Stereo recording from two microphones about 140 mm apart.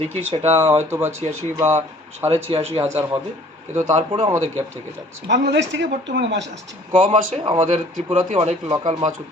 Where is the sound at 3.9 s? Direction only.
55° right (ahead or behind).